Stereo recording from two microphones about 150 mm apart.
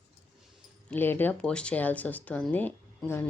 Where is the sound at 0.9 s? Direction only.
15° left (ahead or behind).